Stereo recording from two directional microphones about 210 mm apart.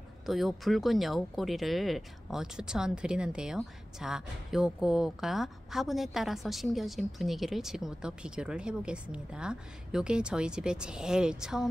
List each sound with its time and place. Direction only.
0.3 s speech: centre (ahead or behind)